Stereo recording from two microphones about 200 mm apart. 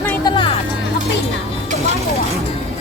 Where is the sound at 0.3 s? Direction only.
25° left (ahead or behind).